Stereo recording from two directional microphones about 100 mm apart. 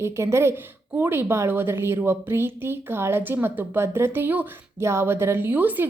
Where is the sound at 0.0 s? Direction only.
25° right (ahead or behind).